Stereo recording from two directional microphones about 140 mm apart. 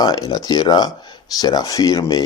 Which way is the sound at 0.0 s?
30° left (ahead or behind).